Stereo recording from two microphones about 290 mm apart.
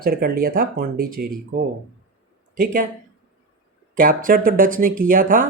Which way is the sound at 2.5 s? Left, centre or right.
Right.